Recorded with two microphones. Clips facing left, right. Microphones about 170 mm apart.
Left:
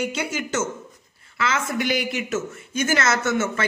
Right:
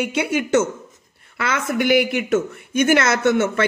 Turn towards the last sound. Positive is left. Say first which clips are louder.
# right 6 dB
turn(degrees=-60)  # may be behind; listen again after turning